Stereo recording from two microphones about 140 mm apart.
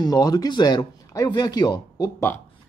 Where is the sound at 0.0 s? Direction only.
30° left (ahead or behind).